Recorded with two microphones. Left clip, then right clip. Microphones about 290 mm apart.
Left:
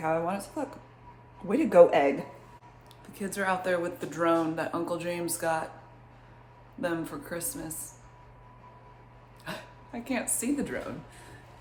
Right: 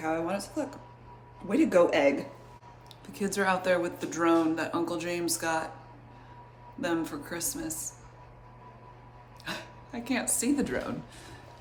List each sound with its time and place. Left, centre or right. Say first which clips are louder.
0.0 s speech: left 2 dB; centre
1.5 s speech: left 4 dB; centre
3.1 s speech: right 2 dB; centre
6.8 s speech: right 1 dB; centre
9.4 s speech: right 2 dB; centre